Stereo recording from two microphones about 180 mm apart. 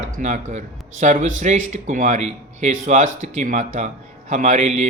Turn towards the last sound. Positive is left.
turn(degrees=-40)  # may be behind; listen again after turning